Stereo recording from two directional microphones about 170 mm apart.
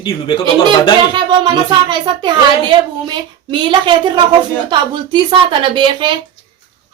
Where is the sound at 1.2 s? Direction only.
25° right (ahead or behind).